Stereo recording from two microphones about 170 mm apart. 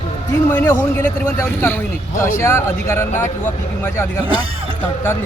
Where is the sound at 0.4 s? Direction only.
15° left (ahead or behind).